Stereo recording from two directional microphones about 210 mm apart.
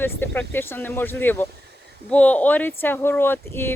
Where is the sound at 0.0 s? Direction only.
10° left (ahead or behind).